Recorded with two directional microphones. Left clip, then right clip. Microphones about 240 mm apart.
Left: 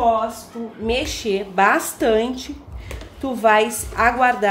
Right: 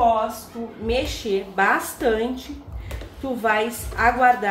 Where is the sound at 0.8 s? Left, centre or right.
Left.